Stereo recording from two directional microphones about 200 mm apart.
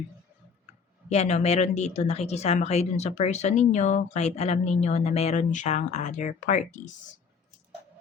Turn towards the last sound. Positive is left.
turn(degrees=40)  # may be behind; listen again after turning